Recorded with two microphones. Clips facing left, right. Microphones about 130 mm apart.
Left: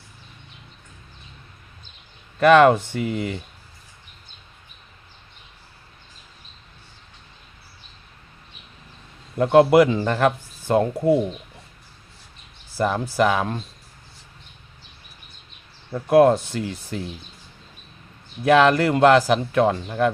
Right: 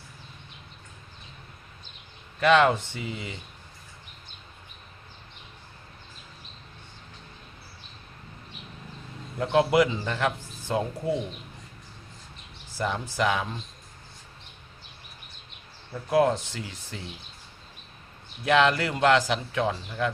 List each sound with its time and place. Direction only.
2.4 s speech: 45° left (ahead or behind)
9.4 s speech: 55° left (ahead or behind)
12.7 s speech: 50° left (ahead or behind)
15.9 s speech: 55° left (ahead or behind)
18.4 s speech: 50° left (ahead or behind)